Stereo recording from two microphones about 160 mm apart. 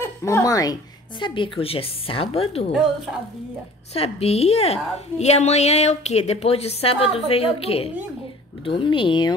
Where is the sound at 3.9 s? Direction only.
40° left (ahead or behind).